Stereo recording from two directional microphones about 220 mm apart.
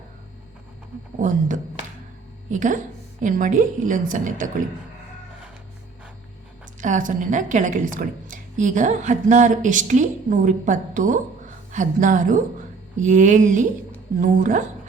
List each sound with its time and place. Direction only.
1.2 s a woman's voice: 35° right (ahead or behind)
6.8 s a woman's voice: 35° right (ahead or behind)